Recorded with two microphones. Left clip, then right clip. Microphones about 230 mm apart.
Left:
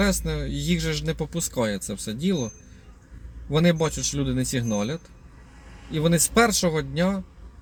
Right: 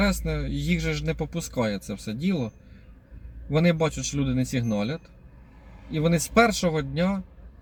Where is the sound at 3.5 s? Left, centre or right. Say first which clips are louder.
Left 1 dB; centre.